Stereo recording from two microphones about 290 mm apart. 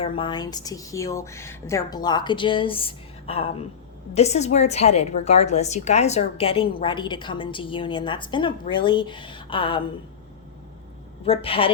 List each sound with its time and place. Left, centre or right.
0.0 s a woman's voice: centre
11.3 s a woman's voice: centre